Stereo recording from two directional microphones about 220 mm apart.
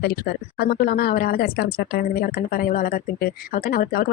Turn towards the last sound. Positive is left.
turn(degrees=45)  # may be behind; listen again after turning